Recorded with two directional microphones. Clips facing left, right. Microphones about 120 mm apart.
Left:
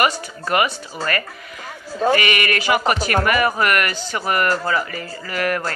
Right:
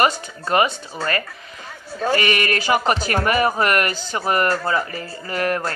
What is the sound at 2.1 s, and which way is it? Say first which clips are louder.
A woman's voice: even; 35° right (ahead or behind).